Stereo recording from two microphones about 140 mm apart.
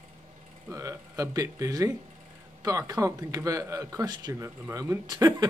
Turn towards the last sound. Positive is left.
turn(degrees=-30)  # may be behind; listen again after turning